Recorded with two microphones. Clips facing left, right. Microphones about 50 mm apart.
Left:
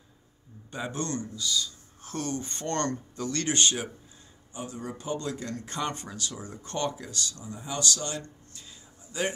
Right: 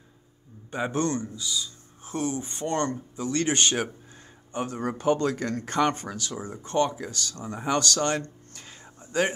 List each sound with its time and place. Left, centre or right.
0.7 s speech: right
7.4 s speech: right